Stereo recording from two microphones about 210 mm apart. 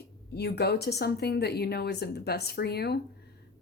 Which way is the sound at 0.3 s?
50° left (ahead or behind).